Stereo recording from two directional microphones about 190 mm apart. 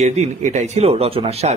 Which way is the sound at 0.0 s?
40° right (ahead or behind).